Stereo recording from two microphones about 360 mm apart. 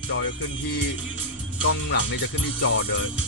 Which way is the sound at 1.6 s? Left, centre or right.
Left.